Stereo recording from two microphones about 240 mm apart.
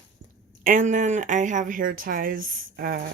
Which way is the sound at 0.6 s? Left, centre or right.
Right.